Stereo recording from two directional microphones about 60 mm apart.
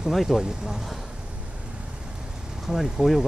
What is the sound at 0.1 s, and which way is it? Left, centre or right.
Speech, centre.